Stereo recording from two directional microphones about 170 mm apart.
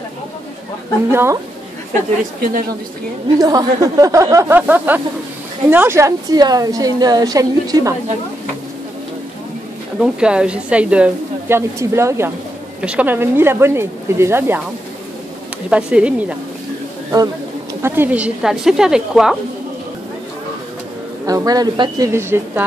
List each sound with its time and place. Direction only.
1.1 s a woman's voice: 15° right (ahead or behind)
3.3 s a woman's voice: 20° right (ahead or behind)
9.9 s a woman's voice: 5° right (ahead or behind)
15.7 s a woman's voice: 5° right (ahead or behind)
17.8 s a woman's voice: 10° right (ahead or behind)
21.3 s a woman's voice: 20° right (ahead or behind)